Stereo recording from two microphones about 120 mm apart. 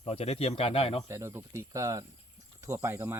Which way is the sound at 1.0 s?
25° right (ahead or behind).